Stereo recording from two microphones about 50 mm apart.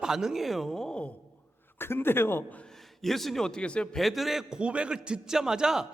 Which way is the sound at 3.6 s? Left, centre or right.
Left.